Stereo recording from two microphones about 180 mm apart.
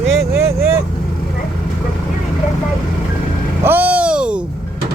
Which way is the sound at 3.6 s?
10° right (ahead or behind).